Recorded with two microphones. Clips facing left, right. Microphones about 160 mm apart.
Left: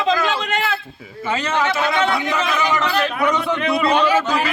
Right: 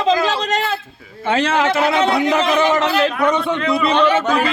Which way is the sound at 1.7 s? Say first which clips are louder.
Right 3 dB; 35° right (ahead or behind).